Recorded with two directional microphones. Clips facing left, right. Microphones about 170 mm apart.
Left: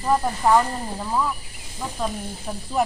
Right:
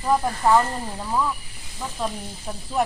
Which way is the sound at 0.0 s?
Centre (ahead or behind).